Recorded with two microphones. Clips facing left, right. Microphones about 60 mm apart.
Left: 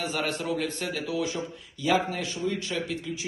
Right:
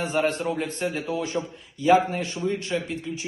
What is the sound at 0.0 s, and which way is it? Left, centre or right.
A man's voice, right.